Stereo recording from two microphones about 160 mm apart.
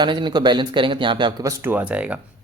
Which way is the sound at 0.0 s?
30° right (ahead or behind).